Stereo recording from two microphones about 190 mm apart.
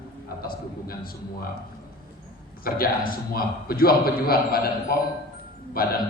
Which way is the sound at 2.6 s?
50° left (ahead or behind).